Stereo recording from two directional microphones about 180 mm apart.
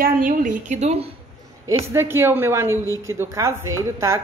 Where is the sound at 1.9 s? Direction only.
15° right (ahead or behind).